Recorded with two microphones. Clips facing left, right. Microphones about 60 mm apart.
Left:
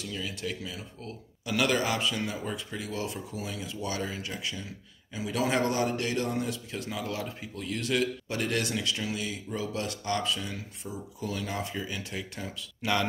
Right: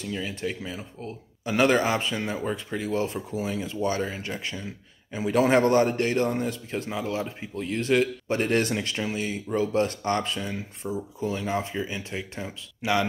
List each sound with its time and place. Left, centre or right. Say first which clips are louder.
0.0 s a man's voice: right 5 dB; right